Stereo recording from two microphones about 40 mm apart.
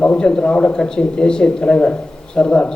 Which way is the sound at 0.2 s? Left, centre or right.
Left.